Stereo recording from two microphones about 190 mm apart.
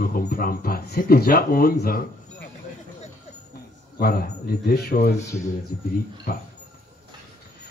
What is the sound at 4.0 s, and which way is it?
Speech, 50° left (ahead or behind).